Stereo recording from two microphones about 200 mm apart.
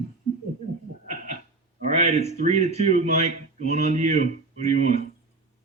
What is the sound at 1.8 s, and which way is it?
Speech, 35° right (ahead or behind).